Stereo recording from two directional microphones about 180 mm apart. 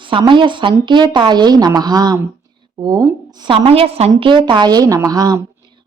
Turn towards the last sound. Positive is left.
turn(degrees=-20)  # may be behind; listen again after turning